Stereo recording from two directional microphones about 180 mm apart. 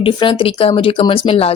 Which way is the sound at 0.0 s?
30° left (ahead or behind).